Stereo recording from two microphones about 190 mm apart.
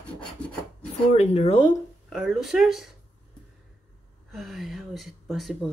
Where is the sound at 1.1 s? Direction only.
35° left (ahead or behind).